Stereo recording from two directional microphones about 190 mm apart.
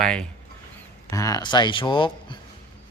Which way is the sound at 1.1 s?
15° left (ahead or behind).